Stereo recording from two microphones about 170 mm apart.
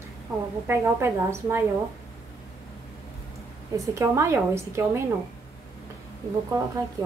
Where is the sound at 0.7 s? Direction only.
15° right (ahead or behind).